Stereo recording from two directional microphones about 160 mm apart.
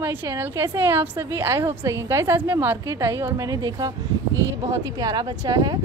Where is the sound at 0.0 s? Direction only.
15° right (ahead or behind).